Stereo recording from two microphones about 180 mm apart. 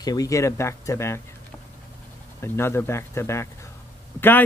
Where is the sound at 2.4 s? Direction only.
15° left (ahead or behind).